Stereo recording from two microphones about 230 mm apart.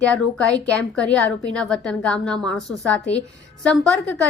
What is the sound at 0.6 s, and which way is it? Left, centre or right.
A woman's voice, centre.